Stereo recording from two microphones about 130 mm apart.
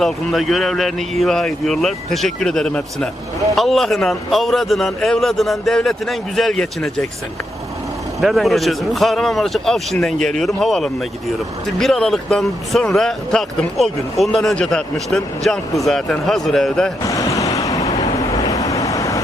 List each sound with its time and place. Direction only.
0.0 s speech: centre (ahead or behind)
8.2 s speech: centre (ahead or behind)
17.0 s vehicle: 25° left (ahead or behind)